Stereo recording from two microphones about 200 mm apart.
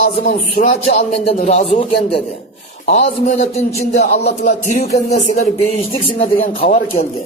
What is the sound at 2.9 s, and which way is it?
Speech, 35° left (ahead or behind).